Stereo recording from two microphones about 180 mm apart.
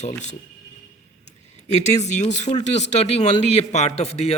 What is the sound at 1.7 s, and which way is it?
A man's voice, 40° left (ahead or behind).